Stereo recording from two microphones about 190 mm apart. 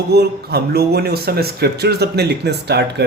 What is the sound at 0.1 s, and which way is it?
Speech, 60° right (ahead or behind).